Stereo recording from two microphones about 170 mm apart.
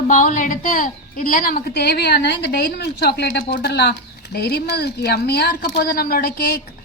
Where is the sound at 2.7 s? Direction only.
75° left (ahead or behind).